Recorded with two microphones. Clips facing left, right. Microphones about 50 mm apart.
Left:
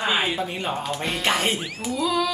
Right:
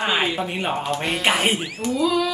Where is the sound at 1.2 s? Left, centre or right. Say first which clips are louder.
Right 2 dB; right.